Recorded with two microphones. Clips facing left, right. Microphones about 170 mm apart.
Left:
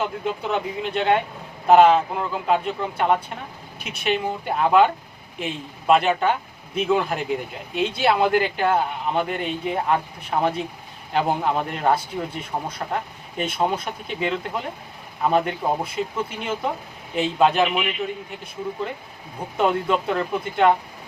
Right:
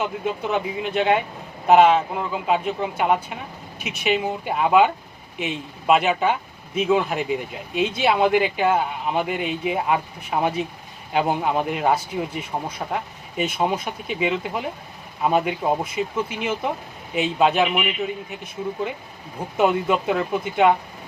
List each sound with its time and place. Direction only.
0.5 s speech: centre (ahead or behind)
19.5 s speech: 5° right (ahead or behind)